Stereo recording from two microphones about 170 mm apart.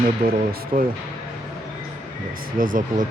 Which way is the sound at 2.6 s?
50° right (ahead or behind).